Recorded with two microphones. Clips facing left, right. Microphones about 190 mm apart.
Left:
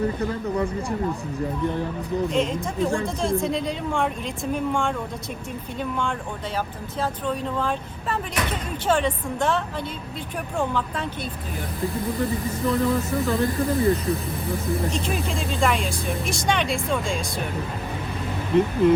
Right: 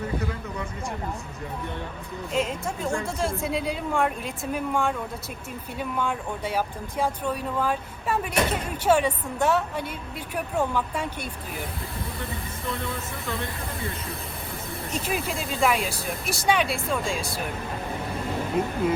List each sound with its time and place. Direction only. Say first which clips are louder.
2.3 s speech: left 3 dB; centre (ahead or behind)
7.0 s speech: left 1 dB; 10° right (ahead or behind)
12.2 s speech: left 11 dB; 40° left (ahead or behind)
14.9 s speech: left 2 dB; 5° right (ahead or behind)
18.5 s speech: left 8 dB; 5° right (ahead or behind)